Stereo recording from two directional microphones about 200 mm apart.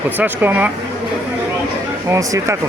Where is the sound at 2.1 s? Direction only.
15° right (ahead or behind).